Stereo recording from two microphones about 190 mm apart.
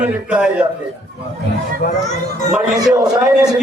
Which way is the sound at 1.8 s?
50° left (ahead or behind).